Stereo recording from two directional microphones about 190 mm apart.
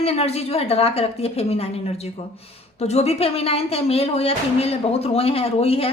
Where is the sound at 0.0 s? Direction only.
30° left (ahead or behind).